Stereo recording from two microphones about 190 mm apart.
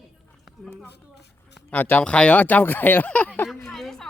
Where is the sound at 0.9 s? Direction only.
60° left (ahead or behind).